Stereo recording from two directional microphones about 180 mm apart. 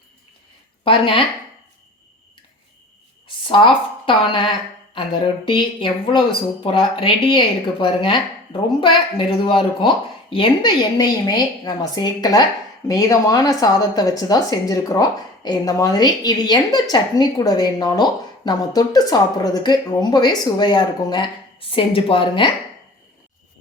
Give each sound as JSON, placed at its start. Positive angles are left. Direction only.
{"t": 0.9, "sound": "a woman's voice", "side_deg": 30}
{"t": 3.4, "sound": "speech", "side_deg": 30}
{"t": 5.5, "sound": "a woman's voice", "side_deg": 30}